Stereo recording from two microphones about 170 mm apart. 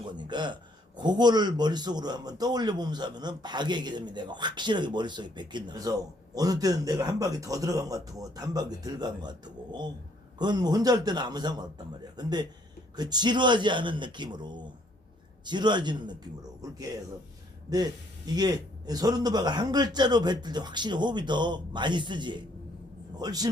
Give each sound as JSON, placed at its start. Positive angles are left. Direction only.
{"t": 0.1, "sound": "a man's voice", "side_deg": -25}